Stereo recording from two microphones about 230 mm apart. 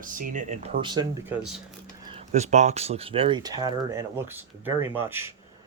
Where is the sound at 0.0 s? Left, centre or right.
Right.